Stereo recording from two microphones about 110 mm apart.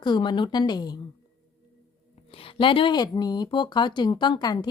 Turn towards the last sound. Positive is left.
turn(degrees=40)  # may be behind; listen again after turning